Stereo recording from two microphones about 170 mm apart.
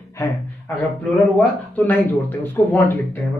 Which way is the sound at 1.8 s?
10° left (ahead or behind).